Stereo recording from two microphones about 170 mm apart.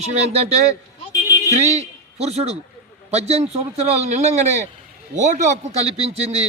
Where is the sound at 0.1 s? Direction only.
40° right (ahead or behind).